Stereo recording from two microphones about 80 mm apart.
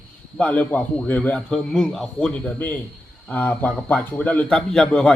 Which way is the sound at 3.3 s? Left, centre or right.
Left.